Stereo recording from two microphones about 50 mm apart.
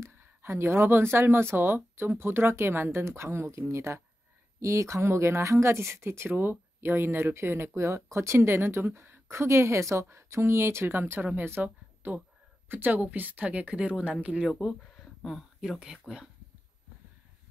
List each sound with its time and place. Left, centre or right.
0.2 s speech: right
4.6 s speech: right
7.7 s speech: right
8.5 s speech: right
11.6 s a sound: right
12.6 s speech: right; by 14.6 s centre
16.1 s speech: centre